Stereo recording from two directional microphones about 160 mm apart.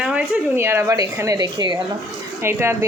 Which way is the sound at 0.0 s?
10° right (ahead or behind).